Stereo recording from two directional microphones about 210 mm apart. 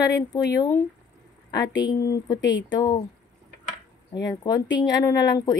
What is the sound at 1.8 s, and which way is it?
A woman's voice, 15° left (ahead or behind).